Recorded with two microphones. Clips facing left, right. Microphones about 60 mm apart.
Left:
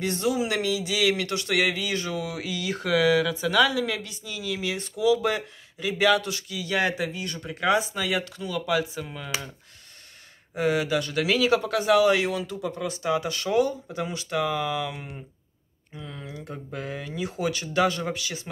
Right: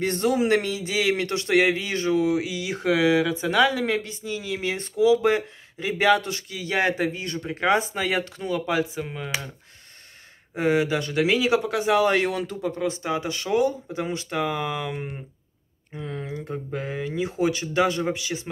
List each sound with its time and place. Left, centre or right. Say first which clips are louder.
0.0 s speech: right 3 dB; right; by 9.5 s centre
10.5 s speech: right 2 dB; right
12.0 s speech: even; right
12.6 s speech: right 2 dB; right